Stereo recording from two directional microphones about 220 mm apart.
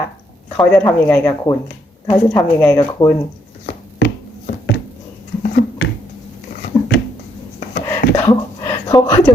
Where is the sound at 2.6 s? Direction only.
15° left (ahead or behind).